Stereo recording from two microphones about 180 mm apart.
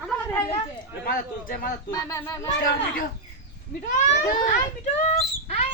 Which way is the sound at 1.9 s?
20° left (ahead or behind).